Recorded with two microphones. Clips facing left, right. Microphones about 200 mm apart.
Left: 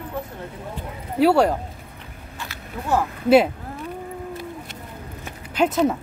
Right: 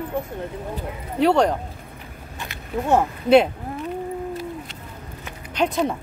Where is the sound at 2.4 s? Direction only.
20° right (ahead or behind).